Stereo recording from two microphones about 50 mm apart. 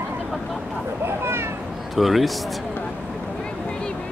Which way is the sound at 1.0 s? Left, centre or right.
Right.